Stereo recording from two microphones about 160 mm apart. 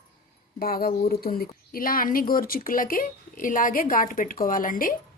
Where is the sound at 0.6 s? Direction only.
70° left (ahead or behind).